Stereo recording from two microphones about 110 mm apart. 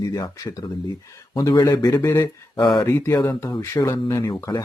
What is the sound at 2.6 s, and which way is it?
Speech, 40° left (ahead or behind).